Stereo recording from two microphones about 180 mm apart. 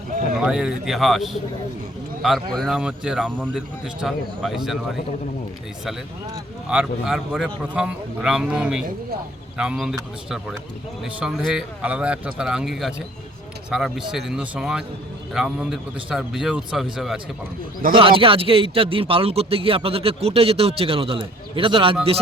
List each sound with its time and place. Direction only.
0.3 s speech: 5° right (ahead or behind)
6.7 s speech: 5° right (ahead or behind)
17.9 s a man's voice: 30° right (ahead or behind)